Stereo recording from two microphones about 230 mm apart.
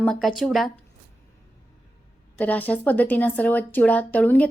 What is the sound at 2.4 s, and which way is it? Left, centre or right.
Speech, centre.